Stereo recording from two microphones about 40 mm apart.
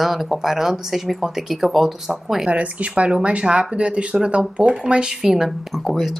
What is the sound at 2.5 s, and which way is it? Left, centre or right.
A woman's voice, right.